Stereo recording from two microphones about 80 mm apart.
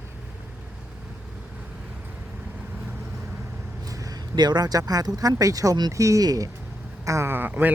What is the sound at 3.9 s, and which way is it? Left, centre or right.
Speech, right.